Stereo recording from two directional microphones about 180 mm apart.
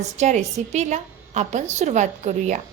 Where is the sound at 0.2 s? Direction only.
40° right (ahead or behind).